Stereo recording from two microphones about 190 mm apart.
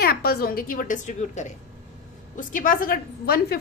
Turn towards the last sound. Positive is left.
turn(degrees=50)  # may be behind; listen again after turning